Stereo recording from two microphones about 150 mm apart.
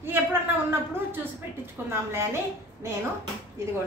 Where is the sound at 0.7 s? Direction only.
15° right (ahead or behind).